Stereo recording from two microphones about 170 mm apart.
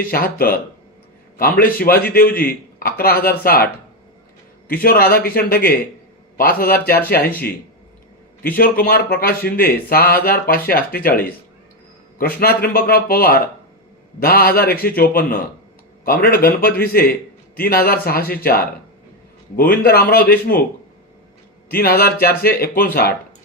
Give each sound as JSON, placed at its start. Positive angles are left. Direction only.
{"t": 0.1, "sound": "a man's voice", "side_deg": 60}
{"t": 4.7, "sound": "a man's voice", "side_deg": 60}
{"t": 8.5, "sound": "a man's voice", "side_deg": 60}
{"t": 21.7, "sound": "a man's voice", "side_deg": 60}